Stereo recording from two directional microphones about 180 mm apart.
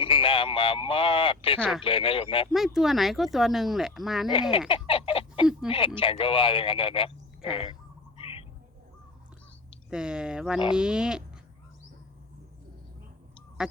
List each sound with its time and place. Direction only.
0.0 s speech: 30° left (ahead or behind)
1.5 s speech: 5° left (ahead or behind)
1.8 s speech: 30° left (ahead or behind)
2.5 s speech: centre (ahead or behind)
4.7 s fowl: 30° left (ahead or behind)
6.0 s speech: 30° left (ahead or behind)
8.2 s squawk: 30° left (ahead or behind)
9.9 s speech: 5° right (ahead or behind)
13.6 s goose: 5° right (ahead or behind)